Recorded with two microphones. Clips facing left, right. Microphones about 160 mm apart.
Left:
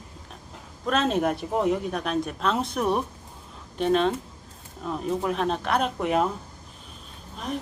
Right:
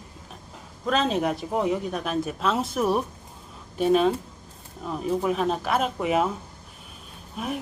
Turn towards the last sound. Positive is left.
turn(degrees=-10)  # may be behind; listen again after turning